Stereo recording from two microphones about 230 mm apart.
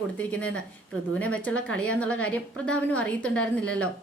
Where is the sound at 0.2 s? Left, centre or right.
Centre.